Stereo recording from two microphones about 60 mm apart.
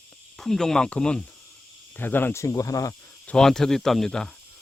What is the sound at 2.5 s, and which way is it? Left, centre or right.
Speech, left.